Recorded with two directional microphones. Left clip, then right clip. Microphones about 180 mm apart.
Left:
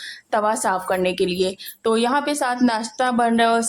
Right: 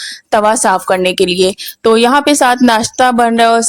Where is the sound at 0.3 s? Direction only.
45° right (ahead or behind).